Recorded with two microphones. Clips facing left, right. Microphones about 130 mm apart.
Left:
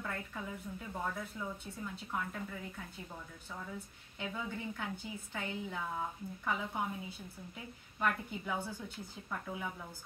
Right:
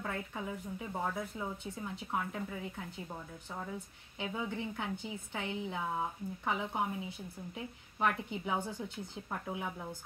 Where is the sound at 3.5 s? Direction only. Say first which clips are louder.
Right 3 dB; 20° right (ahead or behind).